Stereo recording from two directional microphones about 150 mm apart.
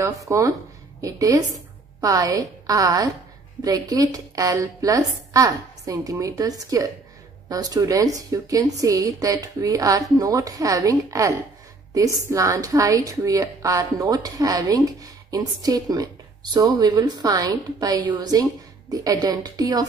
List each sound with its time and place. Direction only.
0.0 s a woman's voice: 20° right (ahead or behind)